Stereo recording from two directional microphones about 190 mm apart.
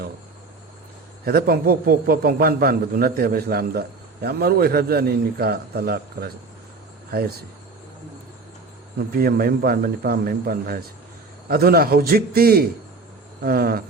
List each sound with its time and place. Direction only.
1.2 s a man's voice: 50° right (ahead or behind)
9.1 s a man's voice: 50° right (ahead or behind)